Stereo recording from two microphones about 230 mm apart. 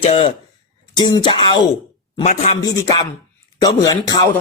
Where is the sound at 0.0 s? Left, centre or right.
Left.